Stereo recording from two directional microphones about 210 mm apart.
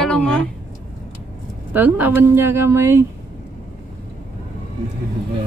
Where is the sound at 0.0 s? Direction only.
5° left (ahead or behind).